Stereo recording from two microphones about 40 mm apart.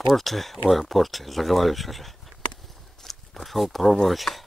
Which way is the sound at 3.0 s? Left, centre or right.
Centre.